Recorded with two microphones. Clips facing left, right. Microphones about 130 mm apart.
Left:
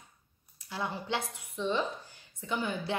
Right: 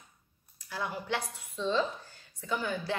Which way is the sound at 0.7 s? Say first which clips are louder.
Even; 25° left (ahead or behind).